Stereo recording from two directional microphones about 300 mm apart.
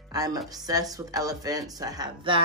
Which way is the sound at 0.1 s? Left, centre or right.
Centre.